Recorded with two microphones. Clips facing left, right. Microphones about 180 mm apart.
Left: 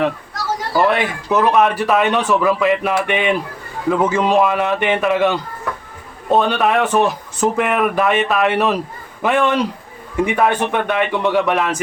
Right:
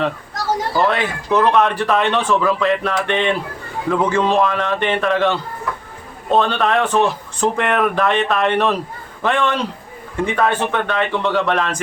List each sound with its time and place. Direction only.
0.7 s speech: 5° left (ahead or behind)